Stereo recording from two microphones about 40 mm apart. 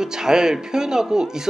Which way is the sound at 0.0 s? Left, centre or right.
Centre.